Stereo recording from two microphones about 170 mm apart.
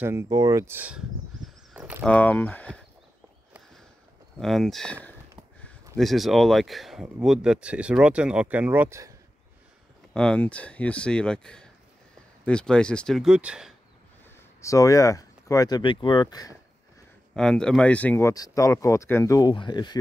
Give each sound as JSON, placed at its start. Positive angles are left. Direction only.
{"t": 0.0, "sound": "speech", "side_deg": -15}
{"t": 2.0, "sound": "speech", "side_deg": 10}
{"t": 4.4, "sound": "speech", "side_deg": 0}
{"t": 5.9, "sound": "speech", "side_deg": 0}
{"t": 10.1, "sound": "speech", "side_deg": 5}
{"t": 14.6, "sound": "speech", "side_deg": 20}
{"t": 17.3, "sound": "speech", "side_deg": 5}